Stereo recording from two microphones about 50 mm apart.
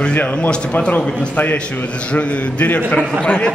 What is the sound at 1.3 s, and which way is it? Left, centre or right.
A man's voice, left.